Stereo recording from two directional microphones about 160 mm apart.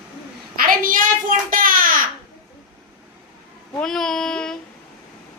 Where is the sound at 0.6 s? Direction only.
60° right (ahead or behind).